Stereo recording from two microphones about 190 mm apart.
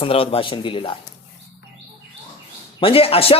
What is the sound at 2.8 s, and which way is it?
Speech, 30° left (ahead or behind).